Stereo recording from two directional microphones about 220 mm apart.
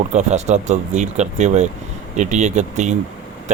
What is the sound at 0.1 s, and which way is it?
Speech, 30° right (ahead or behind).